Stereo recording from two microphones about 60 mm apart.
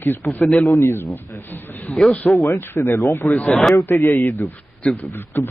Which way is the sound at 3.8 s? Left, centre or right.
Left.